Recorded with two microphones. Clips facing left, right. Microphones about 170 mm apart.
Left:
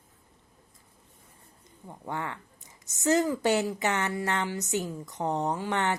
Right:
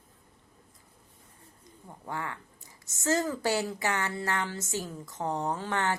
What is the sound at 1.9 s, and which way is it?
Speech, 20° left (ahead or behind).